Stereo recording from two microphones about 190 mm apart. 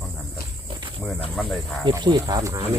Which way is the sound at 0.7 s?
25° right (ahead or behind).